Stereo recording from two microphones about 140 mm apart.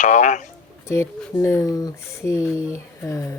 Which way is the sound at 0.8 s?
20° left (ahead or behind).